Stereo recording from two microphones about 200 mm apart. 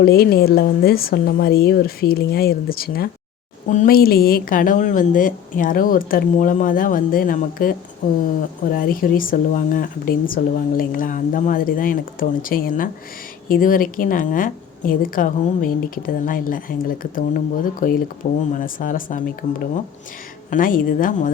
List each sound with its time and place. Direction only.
0.0 s a woman's voice: 50° left (ahead or behind)